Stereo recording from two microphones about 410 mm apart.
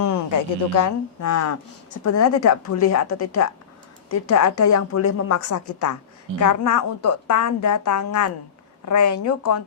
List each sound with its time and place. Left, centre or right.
0.0 s a woman's voice: left